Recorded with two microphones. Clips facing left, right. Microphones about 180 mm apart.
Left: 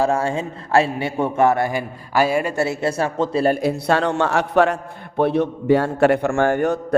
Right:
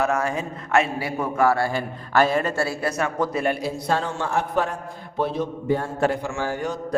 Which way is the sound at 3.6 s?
70° left (ahead or behind).